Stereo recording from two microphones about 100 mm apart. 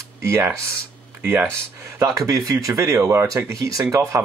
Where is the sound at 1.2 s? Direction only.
20° right (ahead or behind).